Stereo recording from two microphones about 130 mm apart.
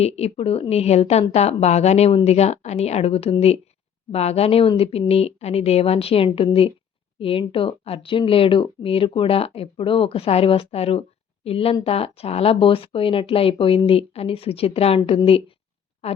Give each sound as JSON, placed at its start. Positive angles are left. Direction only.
{"t": 0.0, "sound": "a woman's voice", "side_deg": 50}